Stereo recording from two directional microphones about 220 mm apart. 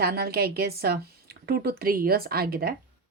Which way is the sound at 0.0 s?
45° right (ahead or behind).